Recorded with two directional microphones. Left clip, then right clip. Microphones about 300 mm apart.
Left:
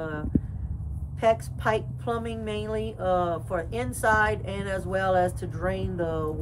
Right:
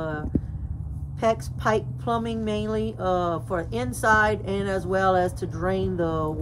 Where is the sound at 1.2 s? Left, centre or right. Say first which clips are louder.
Even; right.